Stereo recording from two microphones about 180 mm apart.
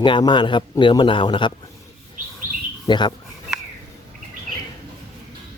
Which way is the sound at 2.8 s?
25° left (ahead or behind).